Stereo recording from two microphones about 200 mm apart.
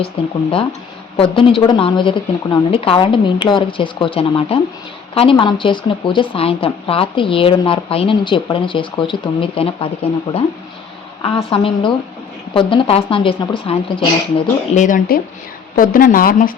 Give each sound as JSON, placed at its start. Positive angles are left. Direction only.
{"t": 0.2, "sound": "a woman's voice", "side_deg": 25}
{"t": 14.8, "sound": "speech", "side_deg": 40}